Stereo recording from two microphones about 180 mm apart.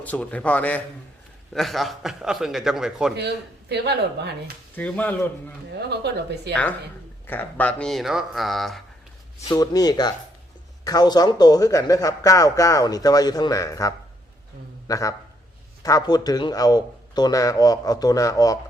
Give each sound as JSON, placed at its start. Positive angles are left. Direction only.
{"t": 0.0, "sound": "a man's voice", "side_deg": 10}
{"t": 3.2, "sound": "speech", "side_deg": -70}
{"t": 4.7, "sound": "speech", "side_deg": 10}
{"t": 5.7, "sound": "speech", "side_deg": -65}
{"t": 6.5, "sound": "a man's voice", "side_deg": 10}
{"t": 9.5, "sound": "a man's voice", "side_deg": 20}